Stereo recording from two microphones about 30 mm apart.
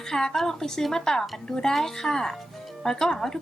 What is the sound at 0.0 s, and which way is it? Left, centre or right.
Speech, centre.